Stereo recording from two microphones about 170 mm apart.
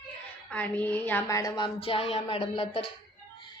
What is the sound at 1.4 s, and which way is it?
Speech, 25° left (ahead or behind).